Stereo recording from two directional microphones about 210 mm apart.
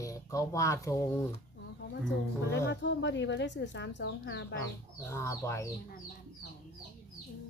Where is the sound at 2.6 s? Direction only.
55° left (ahead or behind).